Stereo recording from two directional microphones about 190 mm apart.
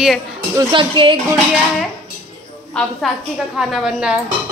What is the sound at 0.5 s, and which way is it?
Speech, 25° right (ahead or behind).